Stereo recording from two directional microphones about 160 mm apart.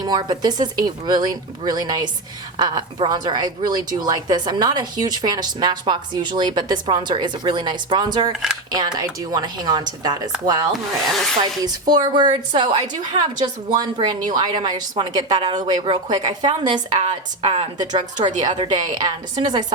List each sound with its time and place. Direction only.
0.0 s a woman's voice: 25° right (ahead or behind)
8.3 s speech: 5° right (ahead or behind)
8.7 s a woman's voice: 25° right (ahead or behind)
11.6 s a woman's voice: 25° right (ahead or behind)
17.4 s a woman's voice: 40° right (ahead or behind)
18.4 s a woman's voice: 30° right (ahead or behind)